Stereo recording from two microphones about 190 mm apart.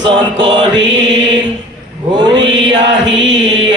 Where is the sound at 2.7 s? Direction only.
75° right (ahead or behind).